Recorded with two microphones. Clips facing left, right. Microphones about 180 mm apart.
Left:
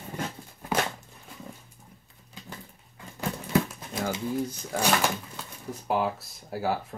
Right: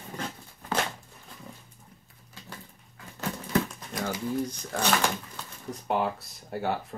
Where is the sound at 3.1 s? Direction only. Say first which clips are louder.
Left 2 dB; 10° left (ahead or behind).